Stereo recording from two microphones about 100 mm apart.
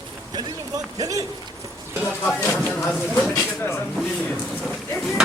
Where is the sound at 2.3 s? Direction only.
20° left (ahead or behind).